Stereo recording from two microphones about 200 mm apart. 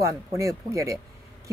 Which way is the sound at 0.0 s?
15° right (ahead or behind).